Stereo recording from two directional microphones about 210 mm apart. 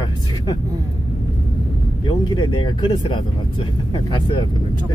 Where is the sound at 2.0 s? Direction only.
20° left (ahead or behind).